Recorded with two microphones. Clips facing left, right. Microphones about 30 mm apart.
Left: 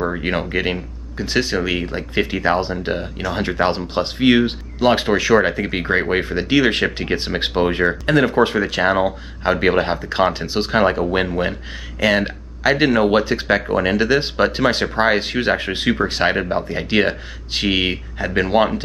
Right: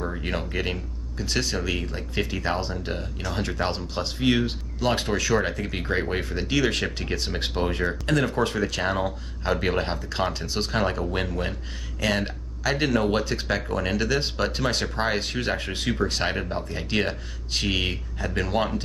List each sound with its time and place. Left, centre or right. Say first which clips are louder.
0.2 s speech: left 8 dB; left